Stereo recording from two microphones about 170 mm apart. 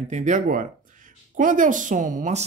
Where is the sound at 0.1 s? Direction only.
45° right (ahead or behind).